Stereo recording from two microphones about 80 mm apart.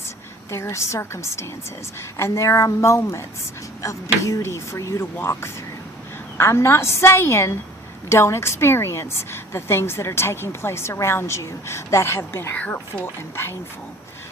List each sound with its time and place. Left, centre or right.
0.5 s a woman's voice: left
12.5 s speech: left